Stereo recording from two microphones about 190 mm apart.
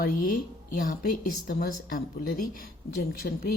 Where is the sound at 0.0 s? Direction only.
45° left (ahead or behind).